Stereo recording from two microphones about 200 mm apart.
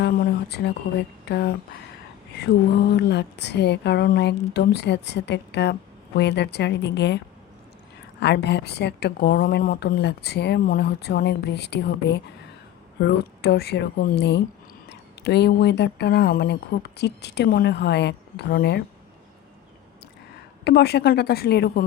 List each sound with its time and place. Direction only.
0.0 s a sound: 50° left (ahead or behind)
1.2 s a woman's voice: 55° left (ahead or behind)
8.2 s a woman's voice: 55° left (ahead or behind)
20.7 s a woman's voice: 55° left (ahead or behind)